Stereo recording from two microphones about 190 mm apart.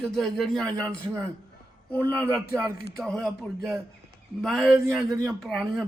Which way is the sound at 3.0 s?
Centre (ahead or behind).